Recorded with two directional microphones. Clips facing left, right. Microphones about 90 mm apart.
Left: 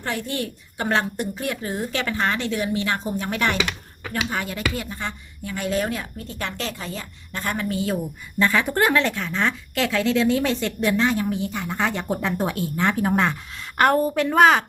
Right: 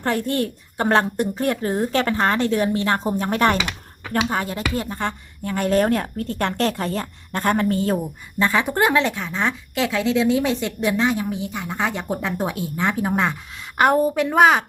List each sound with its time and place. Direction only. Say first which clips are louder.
0.0 s a woman's voice: right 5 dB; 45° right (ahead or behind)
4.9 s a woman's voice: right 5 dB; 50° right (ahead or behind)
8.4 s speech: right 1 dB; 20° right (ahead or behind)